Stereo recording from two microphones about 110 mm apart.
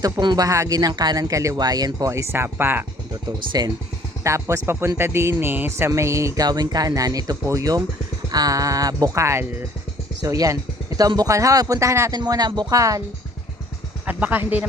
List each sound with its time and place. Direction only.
0.0 s speech: 40° right (ahead or behind); by 2.8 s 20° right (ahead or behind)
3.2 s speech: 40° right (ahead or behind)
4.2 s speech: 25° right (ahead or behind)
14.0 s speech: 15° right (ahead or behind)